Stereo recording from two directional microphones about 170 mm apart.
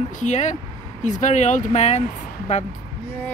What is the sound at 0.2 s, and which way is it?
Speech, 45° left (ahead or behind).